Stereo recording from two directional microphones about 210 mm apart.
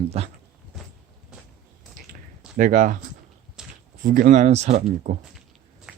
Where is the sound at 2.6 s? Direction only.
40° right (ahead or behind).